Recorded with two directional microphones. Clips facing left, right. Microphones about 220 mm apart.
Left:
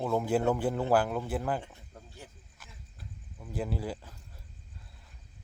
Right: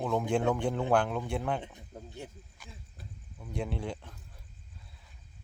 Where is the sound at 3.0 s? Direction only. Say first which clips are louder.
Left 2 dB; 5° left (ahead or behind).